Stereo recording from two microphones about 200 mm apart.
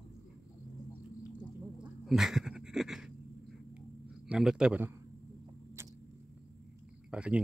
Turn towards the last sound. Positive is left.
turn(degrees=-5)  # may be behind; listen again after turning